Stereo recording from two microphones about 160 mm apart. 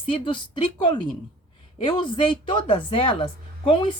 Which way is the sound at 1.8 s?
30° left (ahead or behind).